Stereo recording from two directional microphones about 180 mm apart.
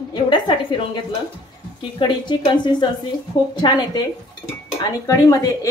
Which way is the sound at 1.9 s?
25° left (ahead or behind).